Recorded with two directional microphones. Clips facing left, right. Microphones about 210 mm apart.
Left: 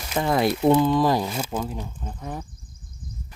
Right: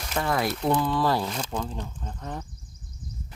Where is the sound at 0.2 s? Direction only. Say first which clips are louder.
Left 5 dB; 20° left (ahead or behind).